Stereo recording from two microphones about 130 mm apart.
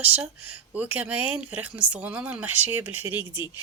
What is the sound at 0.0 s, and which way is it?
Speech, 10° right (ahead or behind).